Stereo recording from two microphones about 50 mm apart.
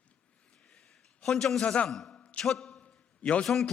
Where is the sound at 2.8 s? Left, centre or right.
Left.